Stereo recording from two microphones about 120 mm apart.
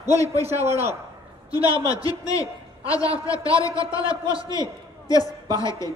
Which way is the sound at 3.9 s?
45° right (ahead or behind).